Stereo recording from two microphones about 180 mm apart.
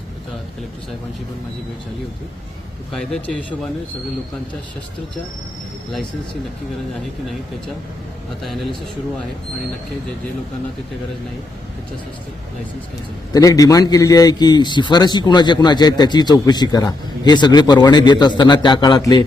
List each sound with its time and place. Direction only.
2.9 s speech: 5° left (ahead or behind)
8.4 s speech: centre (ahead or behind)
13.3 s a man's voice: 20° left (ahead or behind)